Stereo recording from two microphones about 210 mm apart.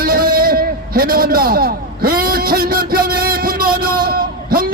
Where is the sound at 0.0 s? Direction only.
45° right (ahead or behind).